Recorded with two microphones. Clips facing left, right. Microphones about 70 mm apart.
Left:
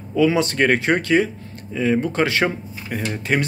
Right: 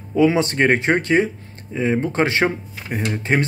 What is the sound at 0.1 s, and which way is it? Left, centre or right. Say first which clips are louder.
A man's voice: right 1 dB; right.